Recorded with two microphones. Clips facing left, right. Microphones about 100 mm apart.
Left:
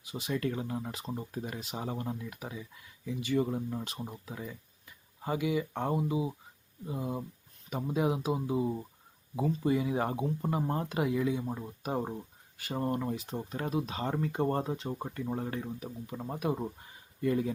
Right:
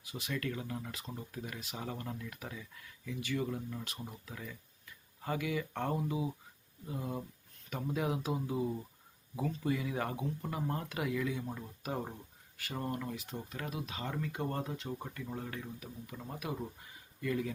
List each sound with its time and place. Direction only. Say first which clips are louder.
0.0 s speech: left 5 dB; 25° left (ahead or behind)